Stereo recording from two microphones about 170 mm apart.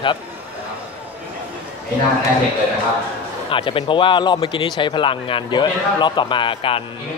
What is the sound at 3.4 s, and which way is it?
A man's voice, 30° left (ahead or behind).